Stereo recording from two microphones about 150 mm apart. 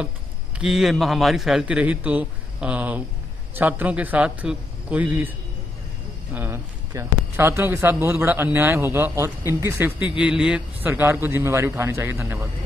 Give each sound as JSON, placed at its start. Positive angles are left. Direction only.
{"t": 0.6, "sound": "a man's voice", "side_deg": 0}
{"t": 6.3, "sound": "a man's voice", "side_deg": -15}